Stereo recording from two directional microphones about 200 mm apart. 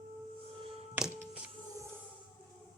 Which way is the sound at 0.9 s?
5° right (ahead or behind).